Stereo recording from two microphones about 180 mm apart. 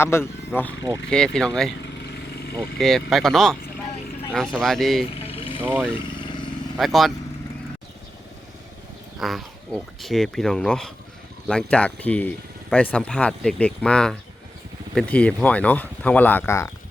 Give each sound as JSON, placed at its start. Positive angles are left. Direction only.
{"t": 0.0, "sound": "speech", "side_deg": 15}
{"t": 2.7, "sound": "speech", "side_deg": 0}
{"t": 5.2, "sound": "a sound", "side_deg": 30}
{"t": 5.6, "sound": "speech", "side_deg": -10}
{"t": 6.1, "sound": "vehicle", "side_deg": 25}
{"t": 6.7, "sound": "speech", "side_deg": 0}
{"t": 9.1, "sound": "speech", "side_deg": 0}